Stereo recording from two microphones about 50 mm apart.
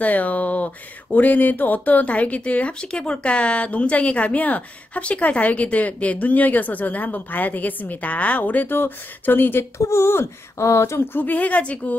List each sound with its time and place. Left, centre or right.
0.0 s speech: left
8.7 s speech: left
9.8 s speech: left
11.1 s speech: left